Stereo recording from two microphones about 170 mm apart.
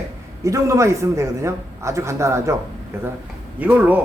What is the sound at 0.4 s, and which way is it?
A man's voice, 20° right (ahead or behind).